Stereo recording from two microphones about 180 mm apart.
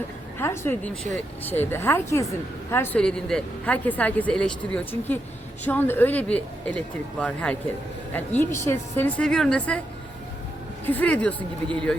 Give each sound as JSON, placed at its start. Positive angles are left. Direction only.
{"t": 0.3, "sound": "speech", "side_deg": 15}
{"t": 10.8, "sound": "speech", "side_deg": 10}